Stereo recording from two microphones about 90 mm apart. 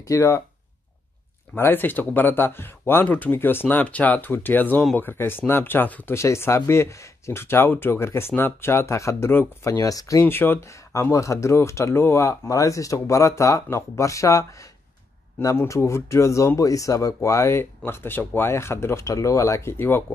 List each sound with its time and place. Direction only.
0.1 s speech: 35° left (ahead or behind)
1.6 s speech: 20° left (ahead or behind)
6.1 s speech: 30° left (ahead or behind)
10.2 s speech: 25° left (ahead or behind)
15.4 s speech: 35° left (ahead or behind)